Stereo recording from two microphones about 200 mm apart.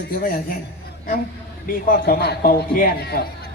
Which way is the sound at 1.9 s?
50° left (ahead or behind).